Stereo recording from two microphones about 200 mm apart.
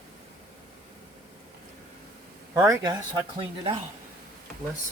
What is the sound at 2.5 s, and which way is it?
Speech, 5° right (ahead or behind).